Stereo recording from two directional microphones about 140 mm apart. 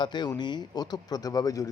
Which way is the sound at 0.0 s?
30° left (ahead or behind).